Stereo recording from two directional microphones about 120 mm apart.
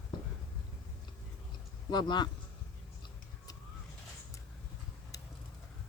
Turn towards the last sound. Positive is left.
turn(degrees=30)  # may be behind; listen again after turning